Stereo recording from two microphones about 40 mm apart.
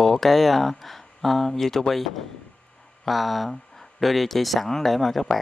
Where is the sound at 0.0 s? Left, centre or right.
Centre.